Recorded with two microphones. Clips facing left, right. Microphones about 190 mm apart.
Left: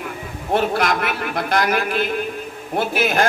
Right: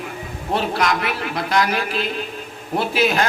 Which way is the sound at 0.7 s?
55° left (ahead or behind).